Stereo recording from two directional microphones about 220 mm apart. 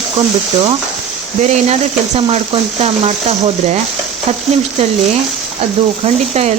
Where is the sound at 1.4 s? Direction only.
30° right (ahead or behind).